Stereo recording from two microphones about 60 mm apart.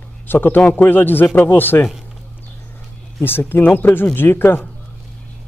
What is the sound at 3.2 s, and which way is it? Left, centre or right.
A man's voice, left.